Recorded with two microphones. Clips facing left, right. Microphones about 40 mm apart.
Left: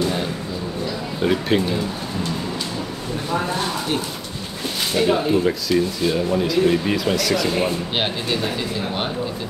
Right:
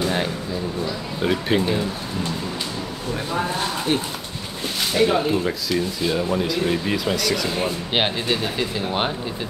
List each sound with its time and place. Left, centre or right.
1.2 s speech: centre
4.9 s speech: centre
7.4 s speech: centre
7.9 s speech: centre